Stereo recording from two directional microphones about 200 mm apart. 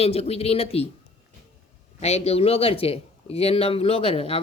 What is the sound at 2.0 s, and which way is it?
A man's voice, 30° left (ahead or behind).